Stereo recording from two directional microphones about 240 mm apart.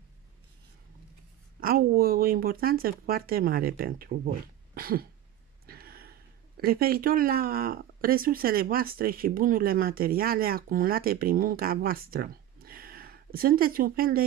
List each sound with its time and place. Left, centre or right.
1.6 s speech: right